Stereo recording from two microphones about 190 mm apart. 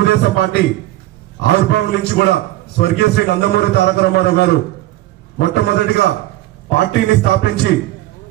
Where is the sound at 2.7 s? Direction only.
60° left (ahead or behind).